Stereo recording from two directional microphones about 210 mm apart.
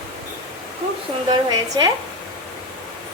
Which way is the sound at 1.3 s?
20° right (ahead or behind).